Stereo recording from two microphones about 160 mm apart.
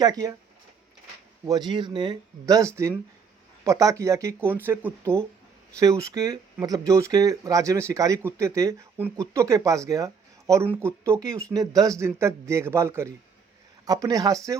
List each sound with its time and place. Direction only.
0.0 s speech: 25° right (ahead or behind)
1.5 s speech: 25° right (ahead or behind)